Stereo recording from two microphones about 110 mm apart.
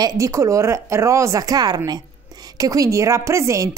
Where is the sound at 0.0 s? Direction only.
30° right (ahead or behind).